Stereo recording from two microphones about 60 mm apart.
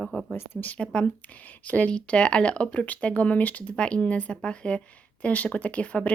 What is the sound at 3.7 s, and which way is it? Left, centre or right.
Speech, centre.